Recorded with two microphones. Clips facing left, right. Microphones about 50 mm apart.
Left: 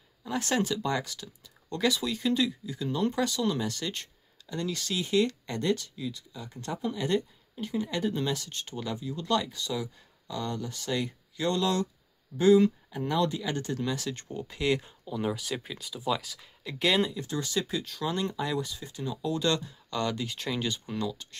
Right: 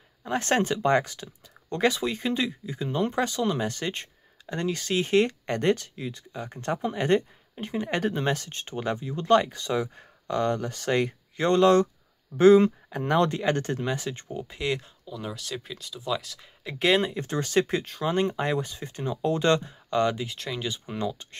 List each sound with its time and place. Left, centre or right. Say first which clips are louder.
0.2 s speech: right 4 dB; right
13.7 s speech: right 2 dB; right; by 14.8 s centre
14.8 s speech: left 4 dB; centre
16.7 s speech: right 3 dB; right
17.1 s speech: right 6 dB; right
20.2 s speech: even; centre
20.8 s speech: right 2 dB; right